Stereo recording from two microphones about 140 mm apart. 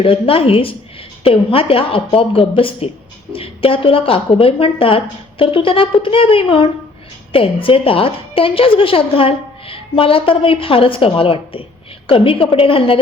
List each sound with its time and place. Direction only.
0.0 s a woman's voice: 40° left (ahead or behind)